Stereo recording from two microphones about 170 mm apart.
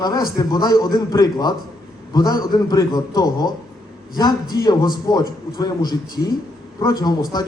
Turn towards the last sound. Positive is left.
turn(degrees=25)  # may be behind; listen again after turning